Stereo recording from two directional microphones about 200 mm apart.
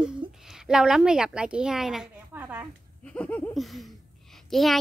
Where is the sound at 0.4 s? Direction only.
Centre (ahead or behind).